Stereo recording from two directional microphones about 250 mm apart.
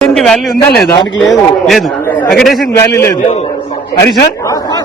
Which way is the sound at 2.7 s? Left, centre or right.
Centre.